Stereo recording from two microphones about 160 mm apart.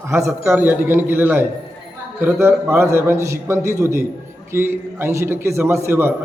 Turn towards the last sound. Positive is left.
turn(degrees=-15)  # may be behind; listen again after turning